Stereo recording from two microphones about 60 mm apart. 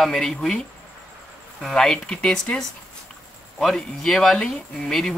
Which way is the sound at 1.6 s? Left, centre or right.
Centre.